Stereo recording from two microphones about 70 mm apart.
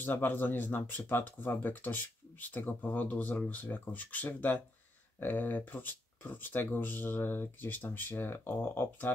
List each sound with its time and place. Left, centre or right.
0.0 s speech: left